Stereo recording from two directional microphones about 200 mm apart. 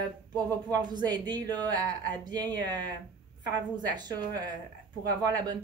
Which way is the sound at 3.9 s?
20° right (ahead or behind).